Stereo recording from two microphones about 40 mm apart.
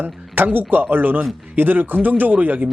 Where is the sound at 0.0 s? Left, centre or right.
Right.